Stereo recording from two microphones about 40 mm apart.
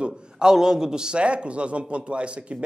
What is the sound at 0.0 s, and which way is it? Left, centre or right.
A man's voice, centre.